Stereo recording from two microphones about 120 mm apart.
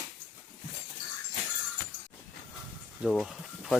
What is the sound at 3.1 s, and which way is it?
Speech, centre (ahead or behind).